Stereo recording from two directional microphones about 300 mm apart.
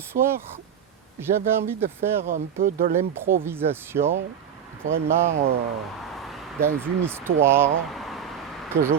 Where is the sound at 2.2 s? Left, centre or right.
Right.